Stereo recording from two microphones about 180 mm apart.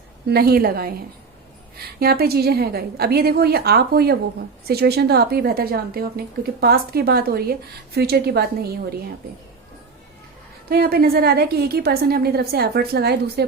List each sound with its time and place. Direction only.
0.3 s speech: 60° right (ahead or behind)
2.0 s speech: 60° right (ahead or behind)
10.7 s speech: 60° right (ahead or behind)